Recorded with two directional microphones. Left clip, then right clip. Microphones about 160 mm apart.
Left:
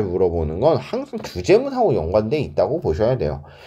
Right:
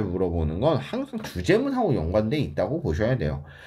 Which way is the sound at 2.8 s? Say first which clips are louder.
Left 7 dB; 25° left (ahead or behind).